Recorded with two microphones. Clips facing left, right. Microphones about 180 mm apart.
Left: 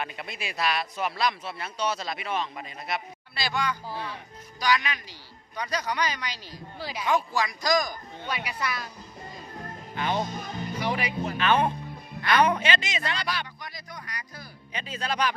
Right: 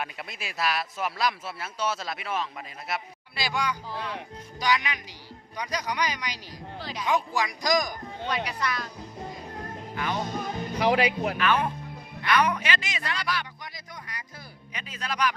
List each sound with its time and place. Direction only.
0.0 s a man's voice: centre (ahead or behind)
6.7 s speech: 10° left (ahead or behind)
7.1 s a man's voice: 15° right (ahead or behind)
8.3 s speech: 5° left (ahead or behind)
9.9 s music: 25° left (ahead or behind)
10.8 s speech: 80° right
11.3 s a man's voice: 25° left (ahead or behind)
13.6 s music: 20° right (ahead or behind)
14.7 s a man's voice: 30° left (ahead or behind)